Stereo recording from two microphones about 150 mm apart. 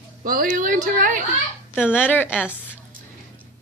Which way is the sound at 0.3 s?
70° right (ahead or behind).